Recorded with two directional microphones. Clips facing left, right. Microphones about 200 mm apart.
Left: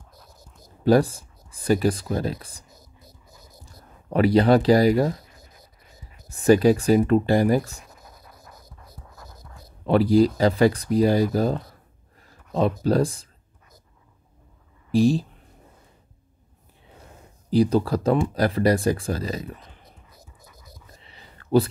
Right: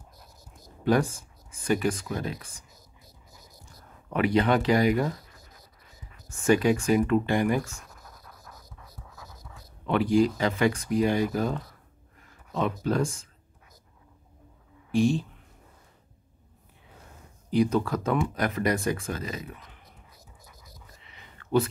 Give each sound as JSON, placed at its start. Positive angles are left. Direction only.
{"t": 0.8, "sound": "speech", "side_deg": 35}
{"t": 3.6, "sound": "speech", "side_deg": 35}
{"t": 7.8, "sound": "scratch", "side_deg": 5}
{"t": 9.8, "sound": "speech", "side_deg": 35}
{"t": 14.9, "sound": "speech", "side_deg": 35}
{"t": 17.5, "sound": "speech", "side_deg": 35}
{"t": 21.0, "sound": "a sound", "side_deg": 35}